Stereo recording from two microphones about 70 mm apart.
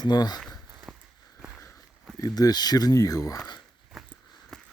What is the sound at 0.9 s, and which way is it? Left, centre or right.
Walk, centre.